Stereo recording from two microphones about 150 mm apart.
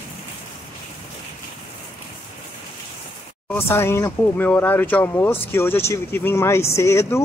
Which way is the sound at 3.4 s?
15° left (ahead or behind).